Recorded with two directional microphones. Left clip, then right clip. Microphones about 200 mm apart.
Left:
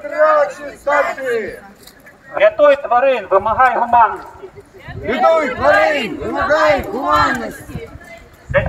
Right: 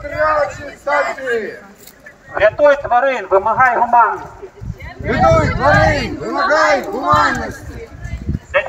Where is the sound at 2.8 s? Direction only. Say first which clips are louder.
Left 1 dB; 45° left (ahead or behind).